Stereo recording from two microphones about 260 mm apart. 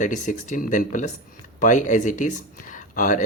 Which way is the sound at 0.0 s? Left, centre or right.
Left.